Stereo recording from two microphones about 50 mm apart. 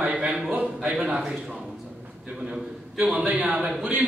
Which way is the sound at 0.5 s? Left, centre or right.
Right.